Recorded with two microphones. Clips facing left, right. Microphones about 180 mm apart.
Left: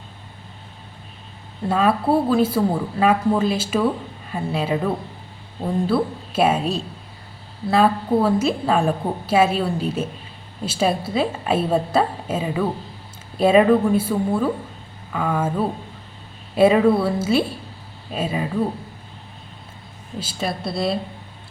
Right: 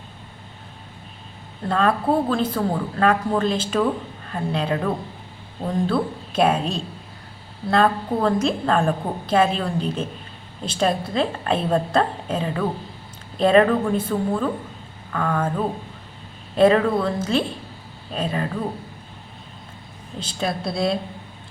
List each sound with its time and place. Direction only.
1.6 s a woman's voice: 5° left (ahead or behind)
20.1 s a woman's voice: 5° left (ahead or behind)